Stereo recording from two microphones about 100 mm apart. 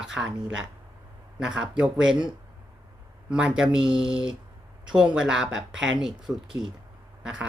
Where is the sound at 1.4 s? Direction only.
10° right (ahead or behind).